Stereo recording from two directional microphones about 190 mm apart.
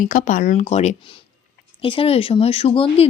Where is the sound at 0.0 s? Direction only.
40° left (ahead or behind).